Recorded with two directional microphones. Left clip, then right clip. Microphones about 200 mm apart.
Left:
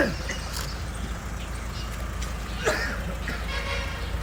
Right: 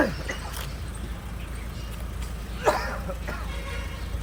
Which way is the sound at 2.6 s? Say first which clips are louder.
Right 2 dB; 20° right (ahead or behind).